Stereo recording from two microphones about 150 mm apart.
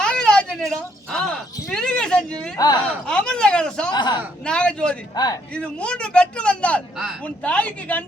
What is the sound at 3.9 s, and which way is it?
Speech, 30° left (ahead or behind).